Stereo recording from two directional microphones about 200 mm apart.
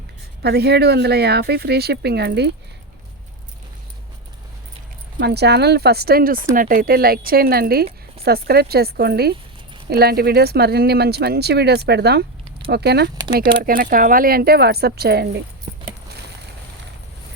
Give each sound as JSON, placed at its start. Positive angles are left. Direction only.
{"t": 0.4, "sound": "speech", "side_deg": -55}
{"t": 5.2, "sound": "speech", "side_deg": -55}